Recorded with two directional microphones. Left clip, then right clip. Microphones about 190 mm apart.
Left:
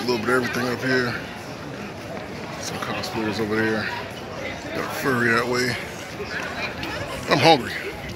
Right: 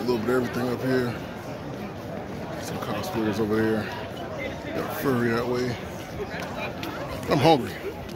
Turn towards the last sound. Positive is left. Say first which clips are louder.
# left 4 dB
turn(degrees=-15)  # may be behind; listen again after turning